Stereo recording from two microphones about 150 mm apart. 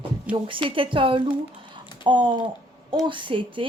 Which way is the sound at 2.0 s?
30° right (ahead or behind).